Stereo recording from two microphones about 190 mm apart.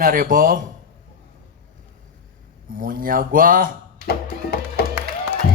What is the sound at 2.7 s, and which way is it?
Music, 45° right (ahead or behind).